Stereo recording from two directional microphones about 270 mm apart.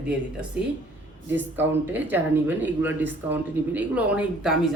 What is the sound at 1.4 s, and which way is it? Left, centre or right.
Speech, centre.